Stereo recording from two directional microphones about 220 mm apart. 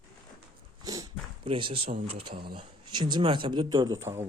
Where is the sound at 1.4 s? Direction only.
25° right (ahead or behind).